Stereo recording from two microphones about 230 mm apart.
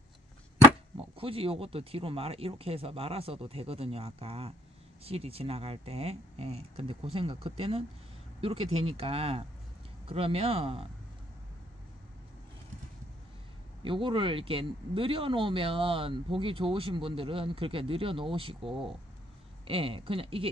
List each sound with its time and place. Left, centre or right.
0.9 s speech: right
13.8 s speech: right